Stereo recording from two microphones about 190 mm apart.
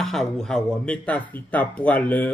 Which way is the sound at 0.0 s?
Centre (ahead or behind).